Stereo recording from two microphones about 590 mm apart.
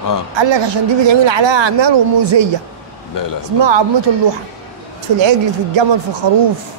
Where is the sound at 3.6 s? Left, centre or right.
Right.